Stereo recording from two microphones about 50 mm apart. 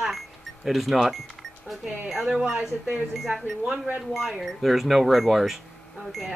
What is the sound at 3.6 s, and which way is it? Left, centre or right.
Speech, right.